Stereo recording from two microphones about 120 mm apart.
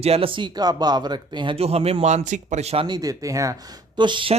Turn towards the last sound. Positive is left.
turn(degrees=-45)  # may be behind; listen again after turning